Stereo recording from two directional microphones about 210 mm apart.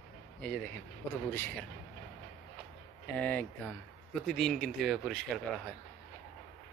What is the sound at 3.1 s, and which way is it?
A man's voice, 5° left (ahead or behind).